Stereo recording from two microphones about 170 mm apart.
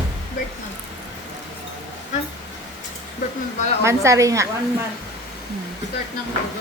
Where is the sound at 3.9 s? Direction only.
20° right (ahead or behind).